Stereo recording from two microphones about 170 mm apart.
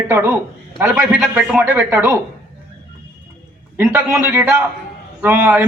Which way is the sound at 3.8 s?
15° right (ahead or behind).